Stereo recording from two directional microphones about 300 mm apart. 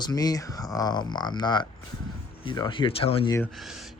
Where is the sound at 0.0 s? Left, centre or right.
Centre.